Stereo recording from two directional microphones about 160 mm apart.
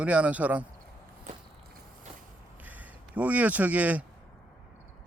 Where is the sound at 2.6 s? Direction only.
10° right (ahead or behind).